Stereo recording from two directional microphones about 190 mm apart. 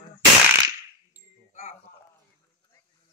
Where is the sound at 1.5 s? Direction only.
35° left (ahead or behind).